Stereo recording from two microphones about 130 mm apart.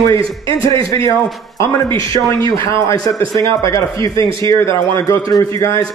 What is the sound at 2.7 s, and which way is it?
A man's voice, 25° left (ahead or behind).